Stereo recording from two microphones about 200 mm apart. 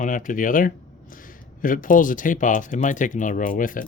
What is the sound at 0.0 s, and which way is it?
Speech, 40° left (ahead or behind).